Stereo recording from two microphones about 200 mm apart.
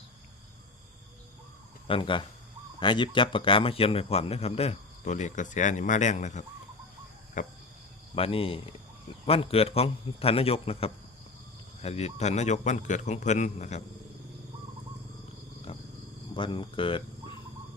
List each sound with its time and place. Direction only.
1.9 s a man's voice: 25° left (ahead or behind)
8.1 s a man's voice: 30° left (ahead or behind)
16.3 s speech: 25° left (ahead or behind)